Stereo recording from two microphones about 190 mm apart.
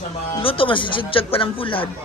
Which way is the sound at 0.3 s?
30° left (ahead or behind).